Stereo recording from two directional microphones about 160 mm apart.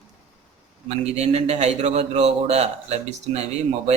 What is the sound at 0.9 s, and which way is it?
A man's voice, 40° right (ahead or behind).